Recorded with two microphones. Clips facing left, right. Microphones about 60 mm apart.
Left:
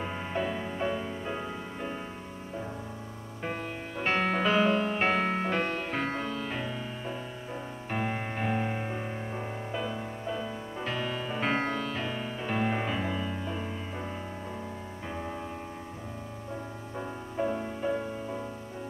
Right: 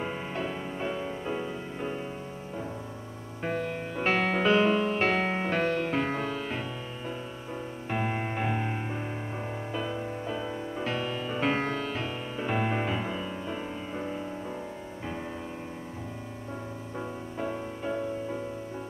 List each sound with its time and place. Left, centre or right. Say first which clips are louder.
0.7 s music: left 1 dB; centre
1.2 s music: right 2 dB; centre
4.0 s music: right 1 dB; centre
6.2 s music: right 1 dB; centre
7.9 s music: right 2 dB; centre
16.9 s music: left 1 dB; centre